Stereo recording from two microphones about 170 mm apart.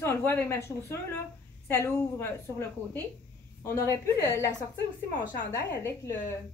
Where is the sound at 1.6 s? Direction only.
15° left (ahead or behind).